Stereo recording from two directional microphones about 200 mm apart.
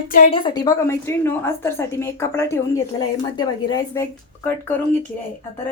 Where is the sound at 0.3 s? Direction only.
20° left (ahead or behind).